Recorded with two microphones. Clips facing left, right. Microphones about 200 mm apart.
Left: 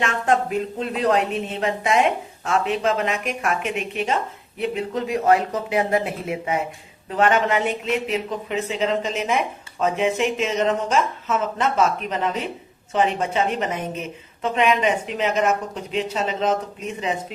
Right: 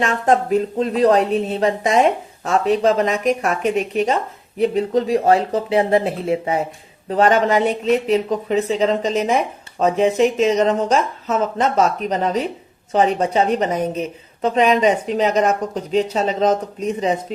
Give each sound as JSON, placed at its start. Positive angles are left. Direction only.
{"t": 0.0, "sound": "a woman's voice", "side_deg": -35}